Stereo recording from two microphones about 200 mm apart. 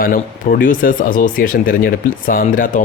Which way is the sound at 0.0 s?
45° left (ahead or behind).